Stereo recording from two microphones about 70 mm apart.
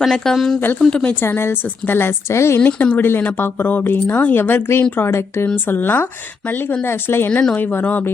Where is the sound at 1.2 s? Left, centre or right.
Left.